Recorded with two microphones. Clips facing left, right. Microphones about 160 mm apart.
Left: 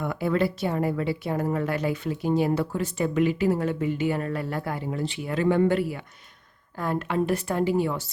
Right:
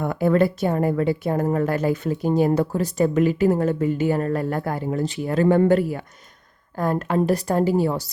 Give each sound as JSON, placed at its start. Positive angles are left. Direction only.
{"t": 0.0, "sound": "a woman's voice", "side_deg": -45}